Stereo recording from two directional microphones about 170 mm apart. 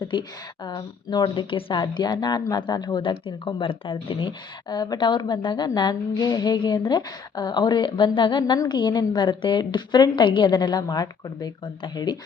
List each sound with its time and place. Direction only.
0.1 s a woman's voice: 30° left (ahead or behind)